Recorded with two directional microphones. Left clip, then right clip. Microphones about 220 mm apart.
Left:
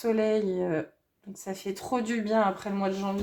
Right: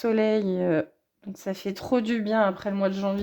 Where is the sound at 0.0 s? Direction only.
40° right (ahead or behind).